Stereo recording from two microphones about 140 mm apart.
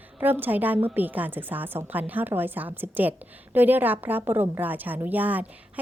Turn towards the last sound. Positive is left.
turn(degrees=-10)  # may be behind; listen again after turning